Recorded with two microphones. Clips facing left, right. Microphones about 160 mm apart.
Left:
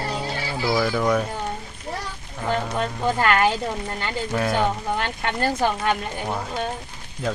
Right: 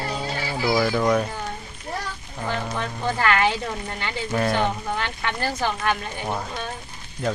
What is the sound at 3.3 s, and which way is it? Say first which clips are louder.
Speech: left 1 dB; 45° left (ahead or behind).